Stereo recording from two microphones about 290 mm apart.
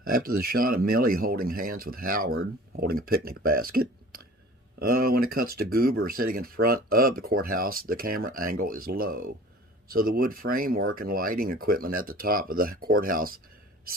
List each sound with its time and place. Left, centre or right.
0.0 s speech: right